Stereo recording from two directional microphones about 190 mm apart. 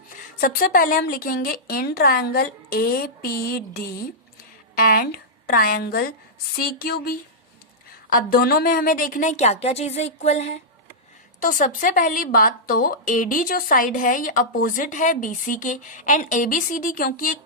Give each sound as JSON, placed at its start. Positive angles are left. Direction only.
{"t": 0.3, "sound": "speech", "side_deg": 50}
{"t": 8.1, "sound": "a woman's voice", "side_deg": 50}